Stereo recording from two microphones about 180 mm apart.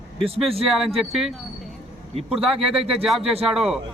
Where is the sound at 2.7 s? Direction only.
35° right (ahead or behind).